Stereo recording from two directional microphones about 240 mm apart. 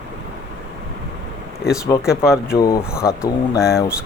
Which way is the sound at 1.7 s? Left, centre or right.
Centre.